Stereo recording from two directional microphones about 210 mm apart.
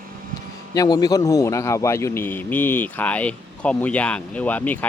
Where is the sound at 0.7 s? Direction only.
15° left (ahead or behind).